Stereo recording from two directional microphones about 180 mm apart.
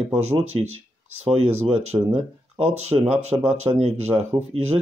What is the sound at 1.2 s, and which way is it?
Speech, 35° right (ahead or behind).